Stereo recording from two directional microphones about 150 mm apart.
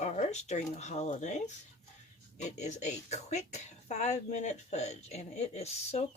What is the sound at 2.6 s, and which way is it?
Speech, 50° left (ahead or behind).